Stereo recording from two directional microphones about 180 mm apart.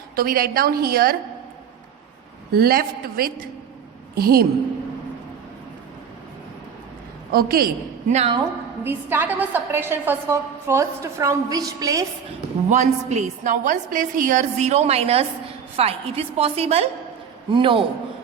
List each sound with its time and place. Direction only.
0.2 s a woman's voice: 55° right (ahead or behind)
2.5 s a woman's voice: 55° right (ahead or behind)
7.3 s a woman's voice: 55° right (ahead or behind)
8.1 s a woman's voice: 35° right (ahead or behind)
8.8 s a woman's voice: 10° right (ahead or behind)
12.7 s a woman's voice: 40° right (ahead or behind)